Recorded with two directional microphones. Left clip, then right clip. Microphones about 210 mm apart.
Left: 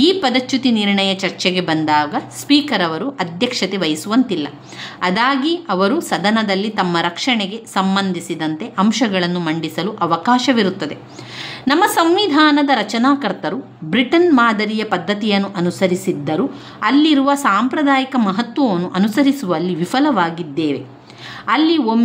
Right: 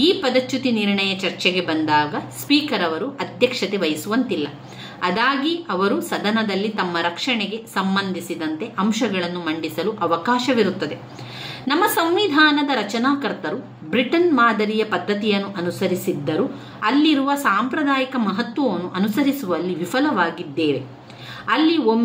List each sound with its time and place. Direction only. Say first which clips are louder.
0.0 s a woman's voice: left 3 dB; 45° left (ahead or behind)